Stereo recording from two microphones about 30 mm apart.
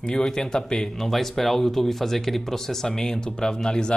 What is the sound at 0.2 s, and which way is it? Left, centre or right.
Speech, left.